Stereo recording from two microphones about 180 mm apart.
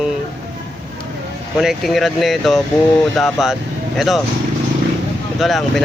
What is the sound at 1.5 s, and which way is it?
Speech, centre (ahead or behind).